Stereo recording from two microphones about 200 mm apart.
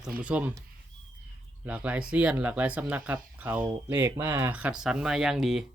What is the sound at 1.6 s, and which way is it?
Speech, 5° right (ahead or behind).